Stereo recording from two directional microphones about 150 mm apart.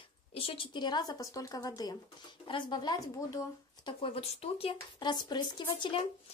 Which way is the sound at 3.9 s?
40° left (ahead or behind).